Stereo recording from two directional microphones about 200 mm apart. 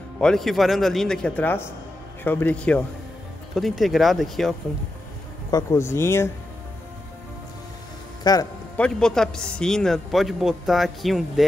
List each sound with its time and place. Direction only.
0.2 s speech: centre (ahead or behind)
5.5 s speech: 15° left (ahead or behind)
8.2 s a man's voice: 20° left (ahead or behind)
8.7 s speech: 5° left (ahead or behind)